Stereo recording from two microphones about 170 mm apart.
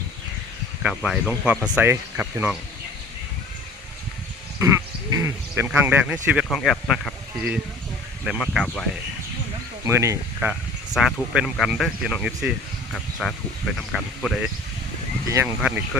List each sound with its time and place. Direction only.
0.8 s speech: 5° right (ahead or behind)
5.1 s speech: 15° right (ahead or behind); by 8.9 s 5° left (ahead or behind)
9.8 s speech: 15° right (ahead or behind)
10.9 s speech: 5° right (ahead or behind)
15.3 s speech: 15° right (ahead or behind)